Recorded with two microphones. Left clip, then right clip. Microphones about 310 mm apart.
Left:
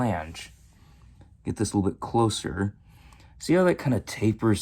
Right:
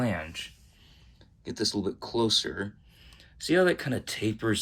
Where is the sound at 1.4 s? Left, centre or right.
Left.